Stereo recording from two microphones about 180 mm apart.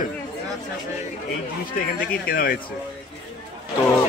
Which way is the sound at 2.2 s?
55° left (ahead or behind).